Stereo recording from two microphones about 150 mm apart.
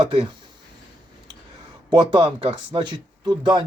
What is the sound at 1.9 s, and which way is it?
Speech, 30° right (ahead or behind).